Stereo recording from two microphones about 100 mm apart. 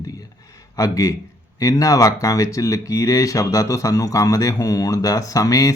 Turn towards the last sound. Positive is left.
turn(degrees=35)  # may be behind; listen again after turning